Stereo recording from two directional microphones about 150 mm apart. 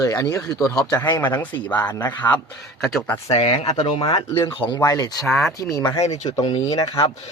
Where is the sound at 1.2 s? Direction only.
10° left (ahead or behind).